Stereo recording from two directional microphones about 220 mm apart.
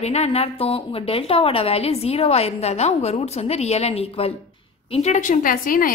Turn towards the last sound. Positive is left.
turn(degrees=40)  # may be behind; listen again after turning